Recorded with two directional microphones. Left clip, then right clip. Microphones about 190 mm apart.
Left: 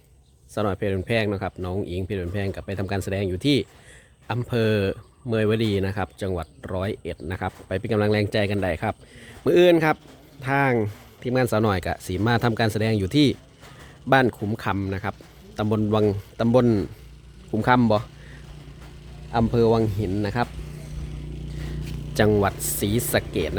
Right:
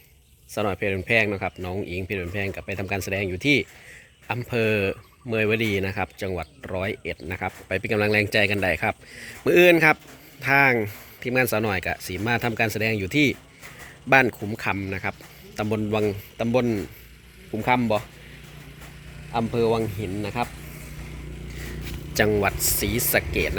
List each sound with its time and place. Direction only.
0.5 s speech: 20° left (ahead or behind)
19.3 s speech: 40° left (ahead or behind)
22.1 s a man's voice: 20° left (ahead or behind)